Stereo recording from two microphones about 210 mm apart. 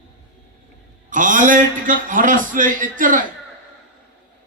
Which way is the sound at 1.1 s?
40° right (ahead or behind).